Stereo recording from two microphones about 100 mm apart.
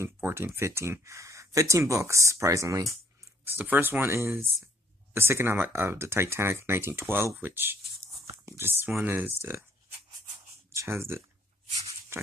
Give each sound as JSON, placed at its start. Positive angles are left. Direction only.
{"t": 0.0, "sound": "speech", "side_deg": -25}
{"t": 3.4, "sound": "speech", "side_deg": -20}
{"t": 10.7, "sound": "speech", "side_deg": -25}
{"t": 12.1, "sound": "dog", "side_deg": -25}